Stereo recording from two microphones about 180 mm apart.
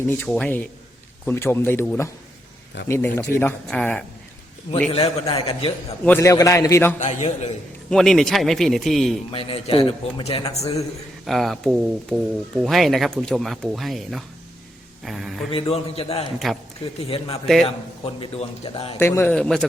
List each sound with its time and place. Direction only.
0.1 s a man's voice: 10° left (ahead or behind)
4.9 s a man's voice: 35° left (ahead or behind)
6.1 s a man's voice: 15° left (ahead or behind)
7.0 s a man's voice: 40° left (ahead or behind)
7.9 s speech: centre (ahead or behind)
9.3 s a man's voice: 30° left (ahead or behind)
11.3 s speech: centre (ahead or behind)
15.5 s a man's voice: 30° left (ahead or behind)
16.4 s speech: centre (ahead or behind)
16.8 s a man's voice: 30° left (ahead or behind)
17.4 s speech: centre (ahead or behind)
18.0 s a man's voice: 30° left (ahead or behind)
18.9 s a man's voice: 15° left (ahead or behind)